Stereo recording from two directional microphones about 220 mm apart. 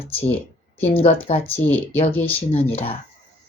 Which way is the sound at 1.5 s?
10° left (ahead or behind).